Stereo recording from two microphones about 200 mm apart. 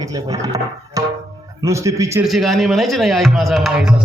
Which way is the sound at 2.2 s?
Centre (ahead or behind).